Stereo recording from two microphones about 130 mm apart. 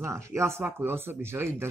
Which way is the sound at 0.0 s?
20° right (ahead or behind).